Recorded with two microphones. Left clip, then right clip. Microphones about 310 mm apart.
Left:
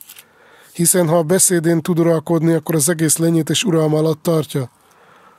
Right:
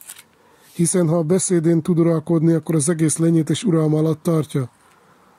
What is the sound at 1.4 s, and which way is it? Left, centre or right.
Speech, centre.